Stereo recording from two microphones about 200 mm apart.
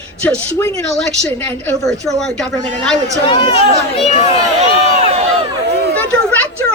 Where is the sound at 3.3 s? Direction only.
25° left (ahead or behind).